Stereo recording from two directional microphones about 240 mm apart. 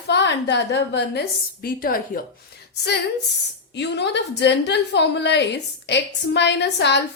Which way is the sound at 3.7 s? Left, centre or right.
Left.